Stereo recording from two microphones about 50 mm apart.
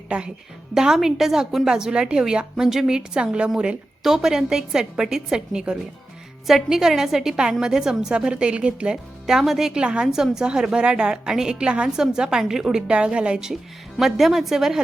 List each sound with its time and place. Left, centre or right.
0.1 s a woman's voice: right
0.7 s a woman's voice: centre
9.2 s a woman's voice: centre
14.0 s a woman's voice: centre